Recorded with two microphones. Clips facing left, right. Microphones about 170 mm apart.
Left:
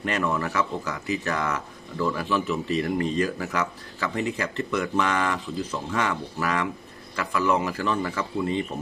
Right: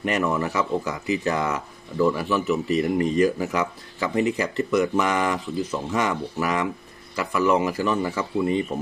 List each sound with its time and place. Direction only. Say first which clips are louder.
0.0 s speech: right 3 dB; 10° right (ahead or behind)